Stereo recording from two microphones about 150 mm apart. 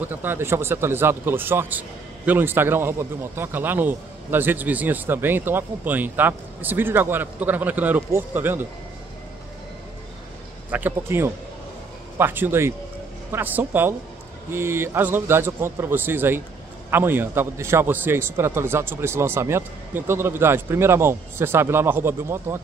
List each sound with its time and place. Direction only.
0.0 s speech: 15° right (ahead or behind)
10.7 s a man's voice: 10° right (ahead or behind)